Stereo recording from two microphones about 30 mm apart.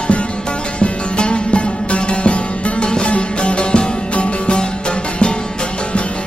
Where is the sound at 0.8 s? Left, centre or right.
Left.